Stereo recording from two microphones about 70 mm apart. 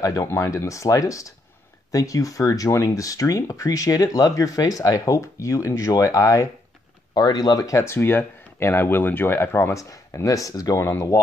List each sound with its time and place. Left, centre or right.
0.2 s speech: left
7.2 s speech: left
7.9 s speech: left
9.8 s speech: left
10.8 s speech: left